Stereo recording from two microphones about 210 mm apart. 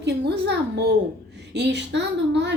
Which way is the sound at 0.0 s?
55° right (ahead or behind).